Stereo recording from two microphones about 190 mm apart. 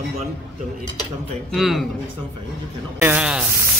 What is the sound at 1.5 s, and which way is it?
Speech, centre (ahead or behind).